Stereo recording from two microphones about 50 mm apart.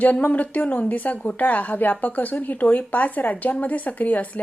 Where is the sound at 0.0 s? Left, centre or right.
Left.